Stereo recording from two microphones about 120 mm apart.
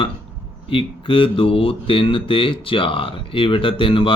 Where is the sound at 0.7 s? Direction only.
45° left (ahead or behind).